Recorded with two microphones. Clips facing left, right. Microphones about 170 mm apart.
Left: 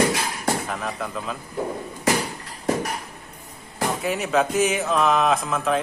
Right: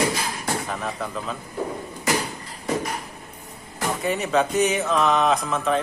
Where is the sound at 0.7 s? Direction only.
Centre (ahead or behind).